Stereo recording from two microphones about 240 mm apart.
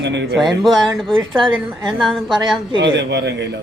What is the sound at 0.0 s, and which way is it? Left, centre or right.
Speech, right.